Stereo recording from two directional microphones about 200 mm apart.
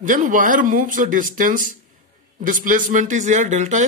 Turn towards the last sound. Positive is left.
turn(degrees=-35)  # may be behind; listen again after turning